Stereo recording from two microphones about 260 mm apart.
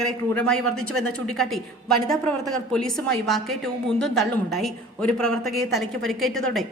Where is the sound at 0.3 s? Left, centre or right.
Centre.